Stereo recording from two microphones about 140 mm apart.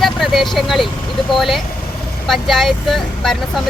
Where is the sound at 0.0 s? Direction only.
Centre (ahead or behind).